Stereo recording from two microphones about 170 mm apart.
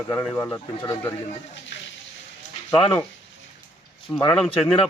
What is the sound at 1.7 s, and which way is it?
Frying, 90° left.